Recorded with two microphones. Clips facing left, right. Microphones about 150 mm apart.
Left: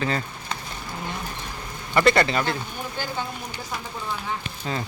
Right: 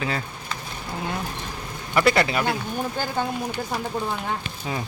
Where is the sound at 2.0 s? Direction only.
5° right (ahead or behind).